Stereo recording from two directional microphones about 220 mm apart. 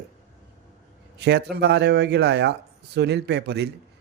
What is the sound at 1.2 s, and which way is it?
A man's voice, 50° right (ahead or behind).